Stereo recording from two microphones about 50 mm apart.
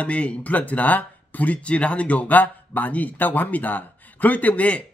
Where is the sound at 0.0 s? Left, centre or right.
Left.